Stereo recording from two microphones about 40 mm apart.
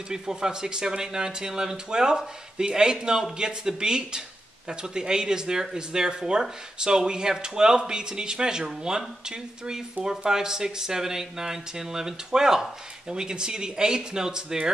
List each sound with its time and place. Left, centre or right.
0.1 s speech: centre